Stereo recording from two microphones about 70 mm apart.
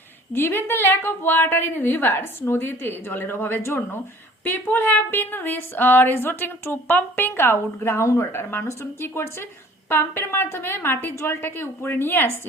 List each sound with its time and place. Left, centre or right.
0.3 s speech: left